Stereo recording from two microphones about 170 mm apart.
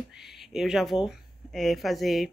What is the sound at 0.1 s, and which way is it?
Speech, centre (ahead or behind).